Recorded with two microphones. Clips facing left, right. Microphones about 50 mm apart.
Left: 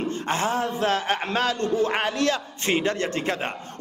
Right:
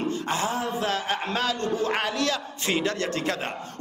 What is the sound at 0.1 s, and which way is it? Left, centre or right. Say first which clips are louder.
A man's voice: left 2 dB; left.